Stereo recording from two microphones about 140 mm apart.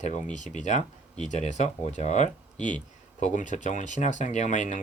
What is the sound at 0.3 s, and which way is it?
Speech, 60° left (ahead or behind).